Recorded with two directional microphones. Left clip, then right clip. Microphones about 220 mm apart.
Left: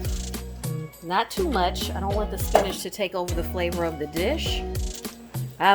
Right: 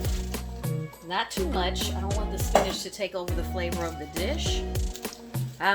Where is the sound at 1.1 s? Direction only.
35° left (ahead or behind).